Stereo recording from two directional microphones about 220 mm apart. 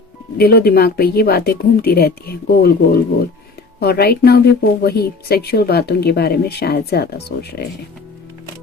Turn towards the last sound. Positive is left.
turn(degrees=45)  # may be behind; listen again after turning